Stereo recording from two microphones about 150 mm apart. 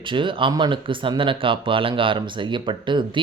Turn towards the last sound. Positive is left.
turn(degrees=-35)  # may be behind; listen again after turning